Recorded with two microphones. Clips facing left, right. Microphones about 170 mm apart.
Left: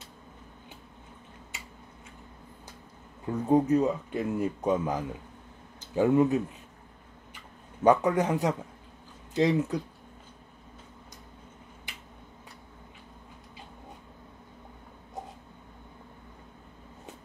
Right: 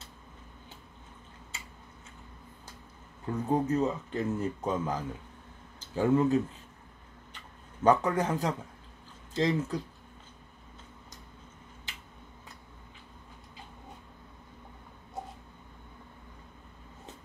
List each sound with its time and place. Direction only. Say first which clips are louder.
3.3 s speech: left 5 dB; 15° left (ahead or behind)
7.8 s speech: left 2 dB; 15° left (ahead or behind)